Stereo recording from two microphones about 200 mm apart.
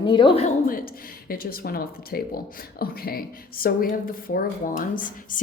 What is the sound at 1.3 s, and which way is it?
A woman's voice, 50° left (ahead or behind).